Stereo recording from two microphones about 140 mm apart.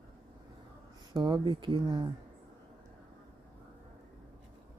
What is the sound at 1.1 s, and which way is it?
Speech, 30° right (ahead or behind).